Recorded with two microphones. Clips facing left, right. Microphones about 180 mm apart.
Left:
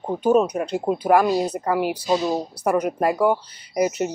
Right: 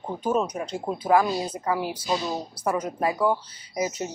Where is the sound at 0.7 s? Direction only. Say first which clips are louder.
Left 3 dB; 10° left (ahead or behind).